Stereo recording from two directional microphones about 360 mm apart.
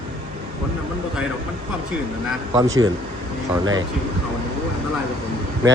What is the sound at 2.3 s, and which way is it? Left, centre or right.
Speech, centre.